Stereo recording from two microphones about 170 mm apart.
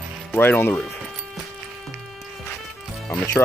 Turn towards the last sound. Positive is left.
turn(degrees=10)  # may be behind; listen again after turning